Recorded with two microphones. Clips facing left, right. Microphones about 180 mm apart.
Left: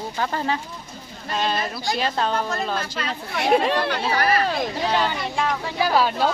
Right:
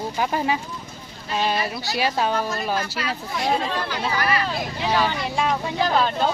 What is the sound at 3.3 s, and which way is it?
Speech, 70° left (ahead or behind).